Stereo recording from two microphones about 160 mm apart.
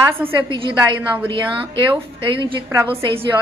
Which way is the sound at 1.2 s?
30° right (ahead or behind).